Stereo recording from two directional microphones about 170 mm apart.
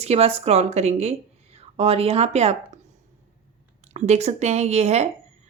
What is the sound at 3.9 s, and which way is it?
A woman's voice, 40° right (ahead or behind).